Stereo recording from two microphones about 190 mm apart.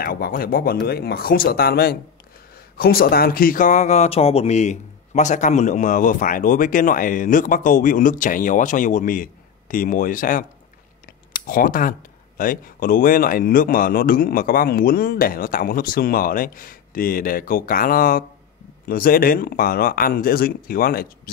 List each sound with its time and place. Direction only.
0.0 s speech: 50° left (ahead or behind)